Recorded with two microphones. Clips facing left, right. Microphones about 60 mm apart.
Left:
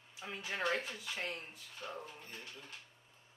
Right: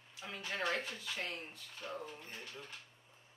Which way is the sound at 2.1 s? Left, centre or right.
Right.